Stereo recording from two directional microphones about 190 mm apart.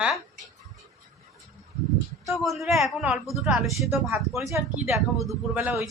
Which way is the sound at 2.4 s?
Centre (ahead or behind).